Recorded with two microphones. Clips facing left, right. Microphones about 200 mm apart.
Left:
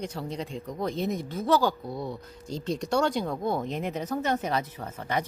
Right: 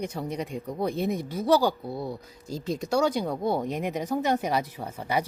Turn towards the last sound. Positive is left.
turn(degrees=-10)  # may be behind; listen again after turning